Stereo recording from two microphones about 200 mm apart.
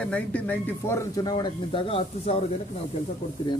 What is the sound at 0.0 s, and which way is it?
Speech, 5° left (ahead or behind).